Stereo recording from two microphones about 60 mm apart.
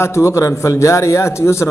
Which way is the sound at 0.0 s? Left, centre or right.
Left.